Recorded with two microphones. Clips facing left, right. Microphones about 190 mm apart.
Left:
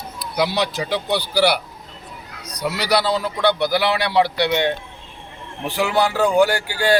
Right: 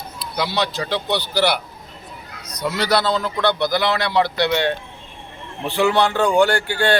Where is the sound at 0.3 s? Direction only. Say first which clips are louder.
Left 2 dB; 10° left (ahead or behind).